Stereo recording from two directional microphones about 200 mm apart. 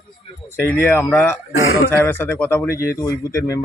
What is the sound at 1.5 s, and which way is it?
Speech, 80° left.